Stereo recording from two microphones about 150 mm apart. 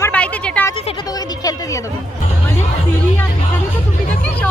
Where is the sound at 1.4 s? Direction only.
25° left (ahead or behind).